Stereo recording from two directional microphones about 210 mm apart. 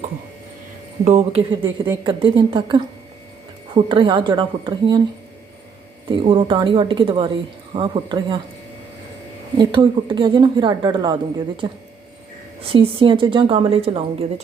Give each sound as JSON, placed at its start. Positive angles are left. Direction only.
{"t": 1.0, "sound": "speech", "side_deg": -30}
{"t": 3.8, "sound": "speech", "side_deg": -25}
{"t": 6.1, "sound": "speech", "side_deg": -25}
{"t": 9.6, "sound": "speech", "side_deg": -20}